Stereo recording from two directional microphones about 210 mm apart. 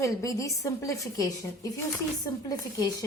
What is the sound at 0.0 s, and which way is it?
A woman's voice, 15° left (ahead or behind).